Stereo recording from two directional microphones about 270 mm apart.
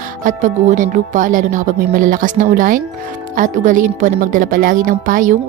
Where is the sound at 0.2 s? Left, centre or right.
Right.